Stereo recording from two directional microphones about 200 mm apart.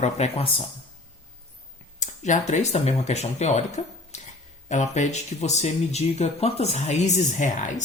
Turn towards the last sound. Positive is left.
turn(degrees=40)  # may be behind; listen again after turning